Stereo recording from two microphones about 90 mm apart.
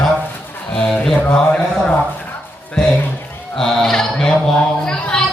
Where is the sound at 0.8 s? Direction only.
5° left (ahead or behind).